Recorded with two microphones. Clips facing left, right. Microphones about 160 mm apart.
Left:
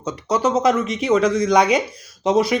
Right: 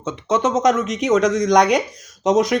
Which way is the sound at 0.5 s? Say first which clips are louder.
Right 1 dB; 10° left (ahead or behind).